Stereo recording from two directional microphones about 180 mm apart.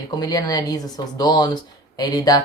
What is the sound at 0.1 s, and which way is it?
Speech, 20° left (ahead or behind).